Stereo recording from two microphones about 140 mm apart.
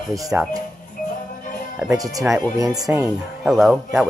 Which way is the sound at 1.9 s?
25° right (ahead or behind).